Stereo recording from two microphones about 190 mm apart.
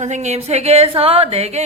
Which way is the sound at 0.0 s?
40° right (ahead or behind).